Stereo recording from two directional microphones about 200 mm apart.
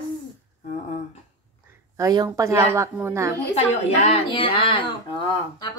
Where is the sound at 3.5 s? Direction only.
30° left (ahead or behind).